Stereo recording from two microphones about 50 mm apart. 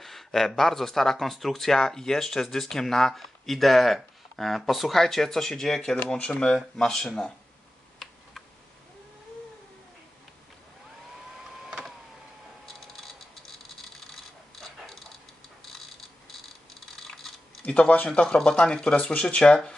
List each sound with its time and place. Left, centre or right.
0.0 s a sound: centre
0.6 s speech: centre
6.1 s speech: left
6.4 s speech: centre
12.6 s a sound: centre
14.5 s a sound: centre
16.9 s typing: centre
17.6 s speech: left
18.2 s speech: centre